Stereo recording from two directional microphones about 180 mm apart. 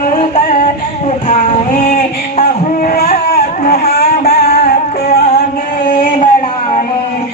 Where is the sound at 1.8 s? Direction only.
50° left (ahead or behind).